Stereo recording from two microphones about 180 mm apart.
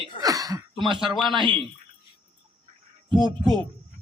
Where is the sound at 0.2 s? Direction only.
20° right (ahead or behind).